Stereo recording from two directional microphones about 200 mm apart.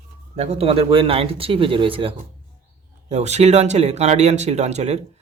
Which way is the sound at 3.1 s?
35° right (ahead or behind).